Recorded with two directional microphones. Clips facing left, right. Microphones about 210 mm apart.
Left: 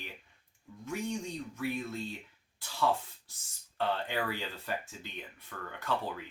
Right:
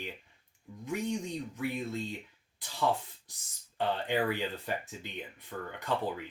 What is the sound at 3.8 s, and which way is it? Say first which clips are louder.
Speech: right 3 dB; 15° right (ahead or behind).